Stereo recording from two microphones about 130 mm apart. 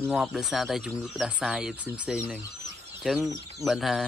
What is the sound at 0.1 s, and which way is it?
Speech, centre (ahead or behind).